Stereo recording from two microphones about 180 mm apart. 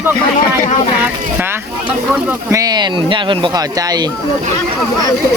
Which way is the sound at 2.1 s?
20° right (ahead or behind).